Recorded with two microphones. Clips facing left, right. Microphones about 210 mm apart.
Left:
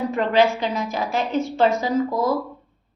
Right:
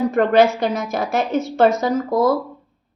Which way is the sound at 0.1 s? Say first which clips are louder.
Right 3 dB; 45° right (ahead or behind).